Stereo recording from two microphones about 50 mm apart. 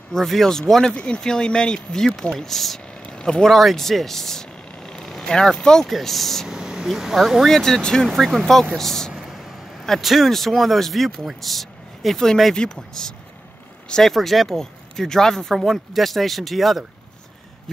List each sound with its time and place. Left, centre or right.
0.1 s speech: centre
0.9 s speech: centre
3.0 s vehicle: centre
3.5 s a sound: centre
5.2 s speech: centre
6.5 s a sound: centre
6.9 s speech: centre
7.4 s speech: centre
9.1 s vehicle: centre
9.8 s speech: centre
14.0 s speech: centre